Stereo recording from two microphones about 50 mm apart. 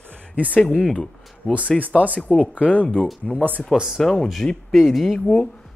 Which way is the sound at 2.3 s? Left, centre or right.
Left.